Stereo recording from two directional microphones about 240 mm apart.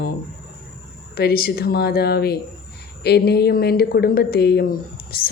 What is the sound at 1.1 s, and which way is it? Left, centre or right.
Speech, left.